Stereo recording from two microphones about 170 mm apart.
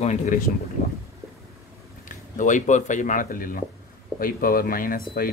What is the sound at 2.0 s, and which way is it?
Speech, 50° left (ahead or behind).